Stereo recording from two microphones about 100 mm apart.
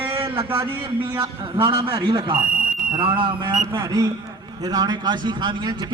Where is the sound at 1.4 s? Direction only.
55° right (ahead or behind).